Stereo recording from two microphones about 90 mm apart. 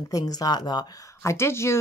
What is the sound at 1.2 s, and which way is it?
Speech, 30° left (ahead or behind).